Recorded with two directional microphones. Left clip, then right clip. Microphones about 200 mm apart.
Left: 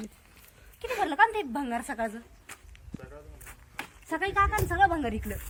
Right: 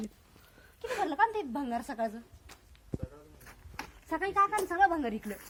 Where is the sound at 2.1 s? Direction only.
5° right (ahead or behind).